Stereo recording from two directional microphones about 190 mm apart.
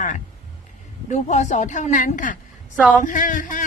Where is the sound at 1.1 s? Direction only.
40° left (ahead or behind).